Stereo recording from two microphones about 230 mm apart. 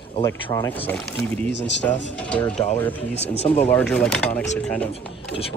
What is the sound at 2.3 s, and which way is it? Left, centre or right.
Speech, centre.